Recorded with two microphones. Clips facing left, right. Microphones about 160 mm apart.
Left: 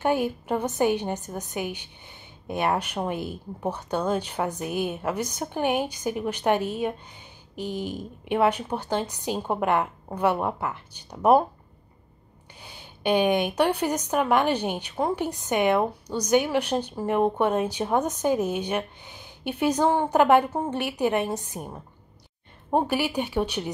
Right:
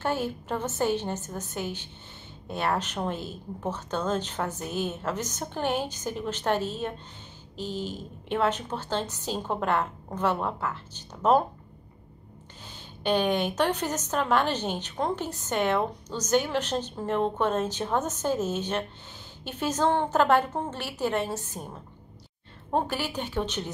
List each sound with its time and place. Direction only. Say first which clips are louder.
0.0 s a woman's voice: left 5 dB; 15° left (ahead or behind)
12.6 s a woman's voice: left 2 dB; 10° left (ahead or behind)